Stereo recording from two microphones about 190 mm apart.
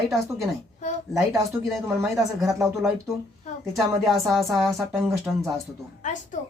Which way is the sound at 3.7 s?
Centre (ahead or behind).